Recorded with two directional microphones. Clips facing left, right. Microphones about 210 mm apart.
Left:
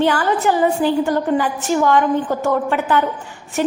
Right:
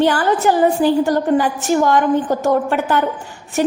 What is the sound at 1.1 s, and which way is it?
A woman's voice, 40° right (ahead or behind).